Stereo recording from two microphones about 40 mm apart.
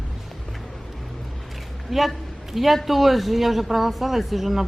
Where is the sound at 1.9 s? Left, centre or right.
Centre.